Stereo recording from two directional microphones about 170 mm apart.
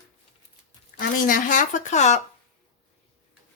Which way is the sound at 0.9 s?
50° left (ahead or behind).